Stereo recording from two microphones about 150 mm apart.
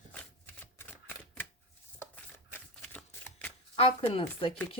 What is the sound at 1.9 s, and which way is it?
Shuffling cards, 15° left (ahead or behind).